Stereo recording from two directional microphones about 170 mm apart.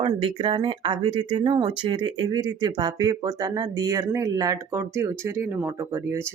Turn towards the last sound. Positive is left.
turn(degrees=-15)  # may be behind; listen again after turning